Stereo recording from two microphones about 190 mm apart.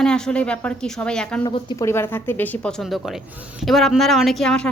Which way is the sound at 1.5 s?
25° left (ahead or behind).